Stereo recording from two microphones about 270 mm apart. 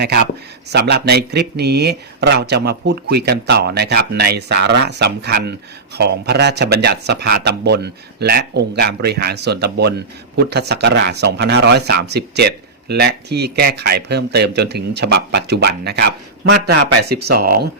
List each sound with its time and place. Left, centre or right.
0.0 s speech: right